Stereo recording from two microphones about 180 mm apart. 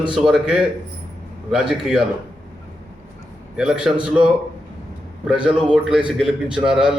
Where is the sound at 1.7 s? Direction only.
Centre (ahead or behind).